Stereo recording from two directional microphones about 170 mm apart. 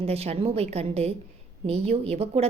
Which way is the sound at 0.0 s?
35° right (ahead or behind).